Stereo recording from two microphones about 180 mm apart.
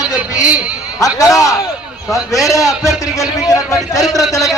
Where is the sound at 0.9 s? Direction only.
20° left (ahead or behind).